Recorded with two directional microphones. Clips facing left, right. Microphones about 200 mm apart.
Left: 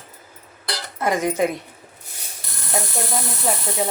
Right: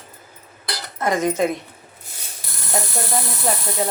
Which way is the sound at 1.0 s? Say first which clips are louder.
Right 1 dB; 10° left (ahead or behind).